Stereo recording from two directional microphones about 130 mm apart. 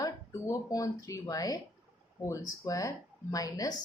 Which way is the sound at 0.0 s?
25° left (ahead or behind).